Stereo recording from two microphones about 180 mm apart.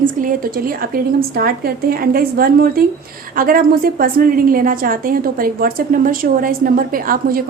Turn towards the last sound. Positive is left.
turn(degrees=-50)  # may be behind; listen again after turning